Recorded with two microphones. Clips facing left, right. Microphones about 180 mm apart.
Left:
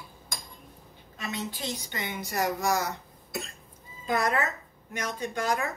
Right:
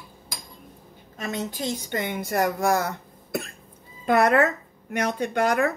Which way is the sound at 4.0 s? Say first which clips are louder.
Right 8 dB; 65° right (ahead or behind).